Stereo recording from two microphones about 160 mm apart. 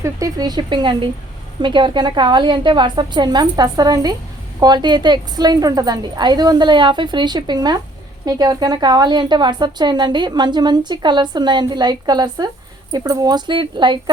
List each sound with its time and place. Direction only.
0.0 s a woman's voice: 20° right (ahead or behind)